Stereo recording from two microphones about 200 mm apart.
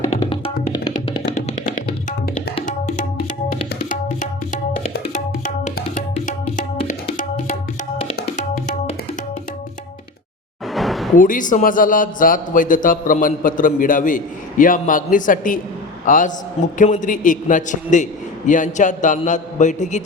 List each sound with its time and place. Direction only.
0.1 s music: 30° left (ahead or behind)
1.4 s tabla: 35° left (ahead or behind)
8.5 s tabla: 40° left (ahead or behind)
10.8 s a sound: centre (ahead or behind)
11.2 s a man's voice: 40° left (ahead or behind)